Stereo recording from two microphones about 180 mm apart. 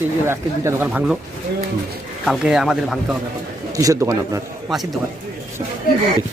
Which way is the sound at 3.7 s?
20° right (ahead or behind).